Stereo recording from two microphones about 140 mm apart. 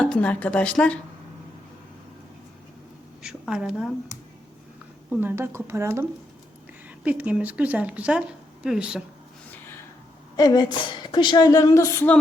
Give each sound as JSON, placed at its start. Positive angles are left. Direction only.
{"t": 0.0, "sound": "speech", "side_deg": 10}
{"t": 3.2, "sound": "a woman's voice", "side_deg": -5}
{"t": 5.2, "sound": "speech", "side_deg": -20}
{"t": 9.5, "sound": "a sound", "side_deg": 15}
{"t": 10.3, "sound": "a woman's voice", "side_deg": 30}